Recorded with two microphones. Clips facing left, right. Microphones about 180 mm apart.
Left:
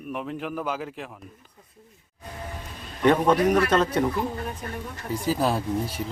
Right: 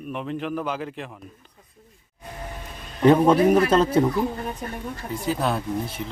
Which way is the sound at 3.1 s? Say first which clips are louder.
Right 4 dB; 25° right (ahead or behind).